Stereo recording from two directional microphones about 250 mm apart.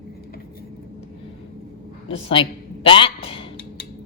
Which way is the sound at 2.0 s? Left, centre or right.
Left.